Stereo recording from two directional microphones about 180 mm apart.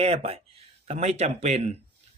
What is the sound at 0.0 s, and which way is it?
Speech, 35° right (ahead or behind).